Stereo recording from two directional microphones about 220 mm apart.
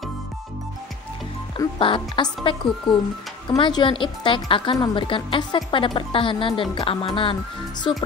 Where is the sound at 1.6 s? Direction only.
20° left (ahead or behind).